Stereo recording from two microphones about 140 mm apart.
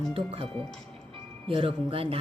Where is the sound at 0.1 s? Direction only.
40° right (ahead or behind).